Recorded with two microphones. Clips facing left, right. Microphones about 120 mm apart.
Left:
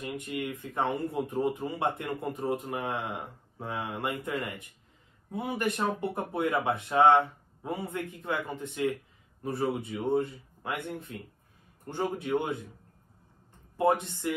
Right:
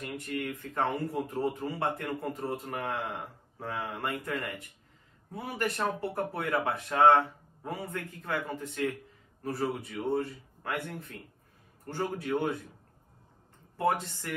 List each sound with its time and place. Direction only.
0.0 s speech: 15° left (ahead or behind)
13.7 s speech: 20° left (ahead or behind)